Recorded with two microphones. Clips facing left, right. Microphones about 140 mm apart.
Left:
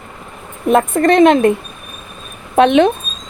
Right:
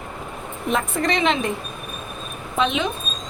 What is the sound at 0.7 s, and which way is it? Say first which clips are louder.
Speech: left 11 dB; 50° left (ahead or behind).